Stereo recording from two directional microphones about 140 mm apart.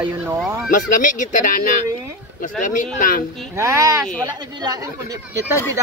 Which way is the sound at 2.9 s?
90° left.